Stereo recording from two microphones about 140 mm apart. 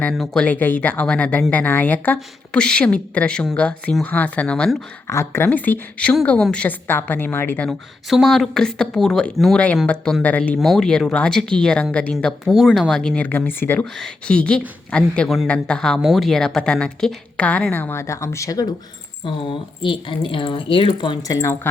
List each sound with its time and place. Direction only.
0.1 s speech: centre (ahead or behind)
0.4 s speech: 10° left (ahead or behind)
5.0 s speech: 20° left (ahead or behind)
8.1 s speech: centre (ahead or behind); by 18.7 s 25° left (ahead or behind)
19.2 s speech: 35° left (ahead or behind); by 21.7 s 20° left (ahead or behind)